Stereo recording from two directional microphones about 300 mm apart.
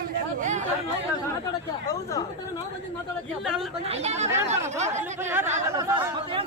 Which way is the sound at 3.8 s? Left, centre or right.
Right.